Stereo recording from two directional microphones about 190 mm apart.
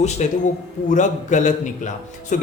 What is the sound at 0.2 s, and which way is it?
A woman's voice, 40° left (ahead or behind).